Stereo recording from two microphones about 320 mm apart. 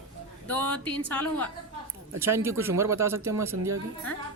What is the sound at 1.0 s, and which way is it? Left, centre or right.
Speech, centre.